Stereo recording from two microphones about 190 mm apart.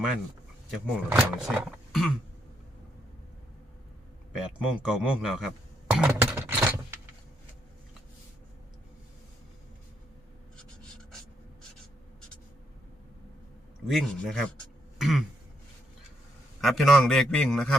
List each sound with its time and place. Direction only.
0.7 s speech: 5° right (ahead or behind)
4.3 s speech: 5° right (ahead or behind)
5.9 s a sound: 10° right (ahead or behind)
13.8 s speech: centre (ahead or behind)
14.9 s throat clearing: centre (ahead or behind)
16.6 s speech: centre (ahead or behind)